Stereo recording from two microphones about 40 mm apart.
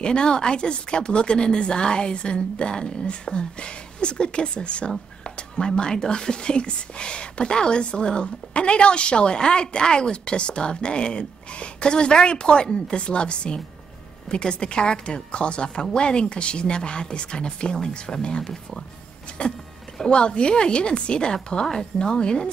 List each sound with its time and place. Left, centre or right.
0.0 s speech: left
20.1 s speech: left